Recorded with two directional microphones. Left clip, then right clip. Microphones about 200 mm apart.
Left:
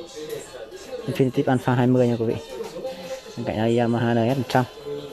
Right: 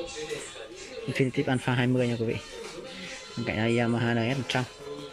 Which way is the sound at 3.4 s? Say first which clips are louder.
Left 5 dB; 10° left (ahead or behind).